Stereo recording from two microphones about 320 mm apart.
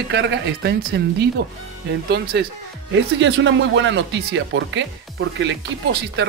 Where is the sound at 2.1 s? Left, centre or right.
Right.